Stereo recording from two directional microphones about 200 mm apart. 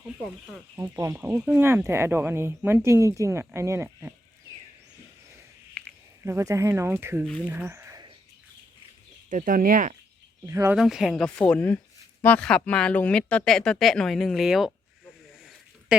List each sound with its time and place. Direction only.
0.8 s speech: 15° right (ahead or behind)
6.2 s speech: 15° right (ahead or behind)
7.4 s a sound: 10° right (ahead or behind)
9.3 s speech: 40° right (ahead or behind)
10.4 s speech: 15° right (ahead or behind)
10.8 s speech: centre (ahead or behind)
15.3 s a sound: centre (ahead or behind)